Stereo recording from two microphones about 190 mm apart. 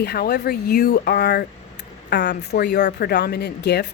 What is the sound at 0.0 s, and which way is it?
Speech, 55° left (ahead or behind).